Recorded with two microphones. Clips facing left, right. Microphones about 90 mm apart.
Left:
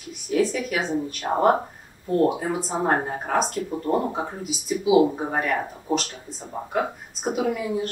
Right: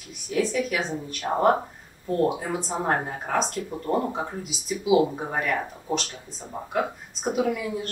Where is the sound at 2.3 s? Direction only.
20° left (ahead or behind).